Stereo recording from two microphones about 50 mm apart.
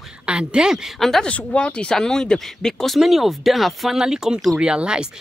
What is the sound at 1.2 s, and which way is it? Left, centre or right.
Speech, left.